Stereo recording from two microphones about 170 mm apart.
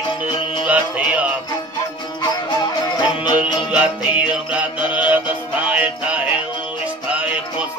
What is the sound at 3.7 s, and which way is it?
Music, 10° right (ahead or behind).